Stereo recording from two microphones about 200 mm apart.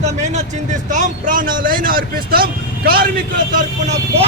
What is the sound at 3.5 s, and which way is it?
Speech, 40° right (ahead or behind).